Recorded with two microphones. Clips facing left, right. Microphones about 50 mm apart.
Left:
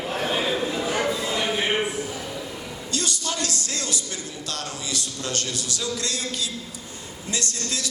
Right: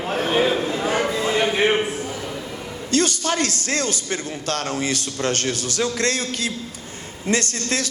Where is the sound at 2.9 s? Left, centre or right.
Right.